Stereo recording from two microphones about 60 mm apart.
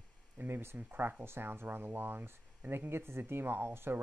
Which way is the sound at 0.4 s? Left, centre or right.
Right.